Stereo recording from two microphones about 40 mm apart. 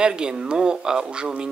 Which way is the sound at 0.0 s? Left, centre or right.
Right.